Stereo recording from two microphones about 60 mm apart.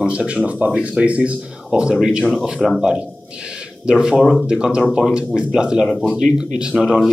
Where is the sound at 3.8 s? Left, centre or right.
Centre.